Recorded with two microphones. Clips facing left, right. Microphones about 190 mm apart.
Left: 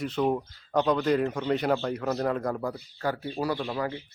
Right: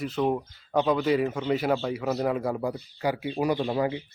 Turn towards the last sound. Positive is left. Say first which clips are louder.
# right 4 dB
turn(degrees=-20)  # may be behind; listen again after turning